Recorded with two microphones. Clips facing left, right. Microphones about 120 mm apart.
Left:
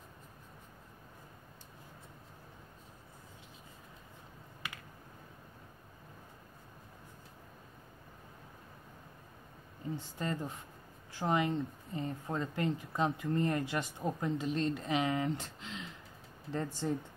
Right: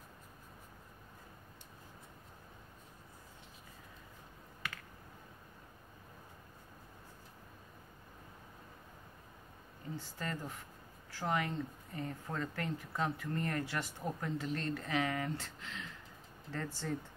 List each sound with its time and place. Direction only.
10.1 s speech: 20° left (ahead or behind)